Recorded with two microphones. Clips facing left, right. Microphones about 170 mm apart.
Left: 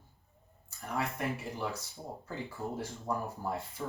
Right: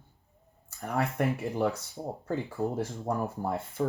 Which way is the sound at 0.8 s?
55° right (ahead or behind).